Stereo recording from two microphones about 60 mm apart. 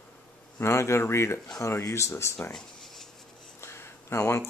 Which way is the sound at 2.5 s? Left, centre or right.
Centre.